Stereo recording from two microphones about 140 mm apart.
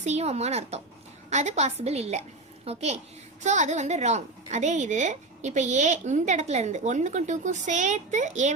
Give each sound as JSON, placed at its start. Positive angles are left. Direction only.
{"t": 0.0, "sound": "a woman's voice", "side_deg": -50}